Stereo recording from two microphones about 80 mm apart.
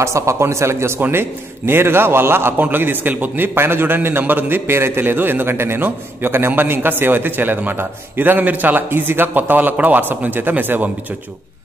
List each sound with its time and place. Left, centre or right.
0.0 s a man's voice: right